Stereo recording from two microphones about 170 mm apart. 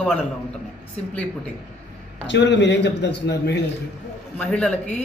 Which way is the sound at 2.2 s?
90° left.